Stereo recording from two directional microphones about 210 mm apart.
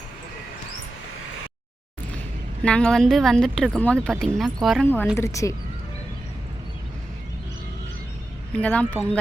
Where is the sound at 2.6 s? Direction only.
5° left (ahead or behind).